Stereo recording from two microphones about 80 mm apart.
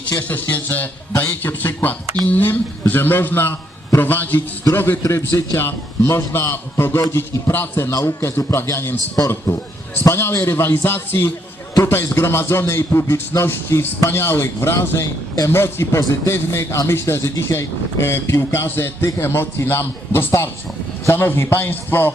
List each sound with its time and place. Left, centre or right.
0.2 s a man's voice: left